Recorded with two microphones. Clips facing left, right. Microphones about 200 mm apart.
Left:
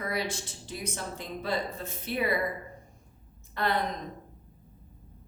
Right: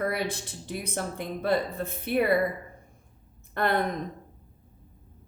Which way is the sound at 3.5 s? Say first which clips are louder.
Right 3 dB; 55° right (ahead or behind).